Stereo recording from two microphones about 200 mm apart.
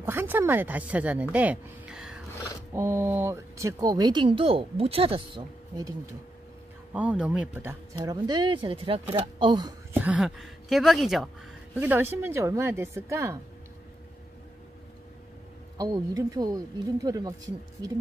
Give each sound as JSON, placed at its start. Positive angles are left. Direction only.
{"t": 0.0, "sound": "speech", "side_deg": -10}
{"t": 1.3, "sound": "a sound", "side_deg": -5}
{"t": 2.7, "sound": "speech", "side_deg": -10}
{"t": 6.9, "sound": "speech", "side_deg": -5}
{"t": 7.9, "sound": "speech", "side_deg": -20}
{"t": 9.9, "sound": "a woman's voice", "side_deg": -5}
{"t": 15.8, "sound": "speech", "side_deg": -15}